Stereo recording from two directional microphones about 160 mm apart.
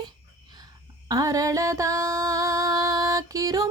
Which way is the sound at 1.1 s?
20° right (ahead or behind).